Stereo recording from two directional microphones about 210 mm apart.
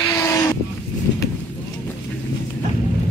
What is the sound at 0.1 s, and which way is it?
Vehicle, 15° left (ahead or behind).